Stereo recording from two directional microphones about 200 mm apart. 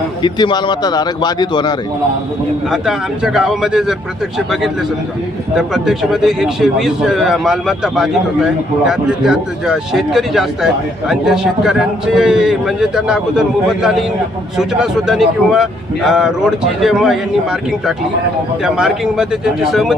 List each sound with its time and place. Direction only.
0.2 s speech: 20° left (ahead or behind)
2.6 s speech: centre (ahead or behind)
5.5 s speech: centre (ahead or behind)